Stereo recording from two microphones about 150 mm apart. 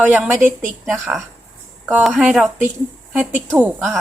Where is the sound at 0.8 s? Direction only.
Centre (ahead or behind).